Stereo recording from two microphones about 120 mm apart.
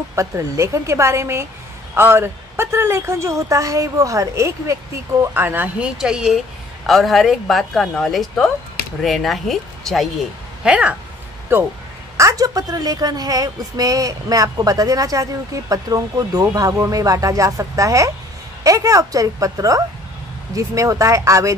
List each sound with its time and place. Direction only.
0.1 s a woman's voice: 25° right (ahead or behind); by 11.0 s 10° right (ahead or behind)
12.2 s a woman's voice: 30° right (ahead or behind)